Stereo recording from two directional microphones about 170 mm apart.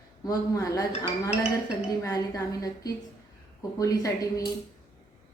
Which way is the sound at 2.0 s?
20° left (ahead or behind).